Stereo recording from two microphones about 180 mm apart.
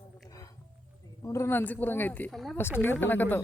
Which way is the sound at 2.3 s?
Centre (ahead or behind).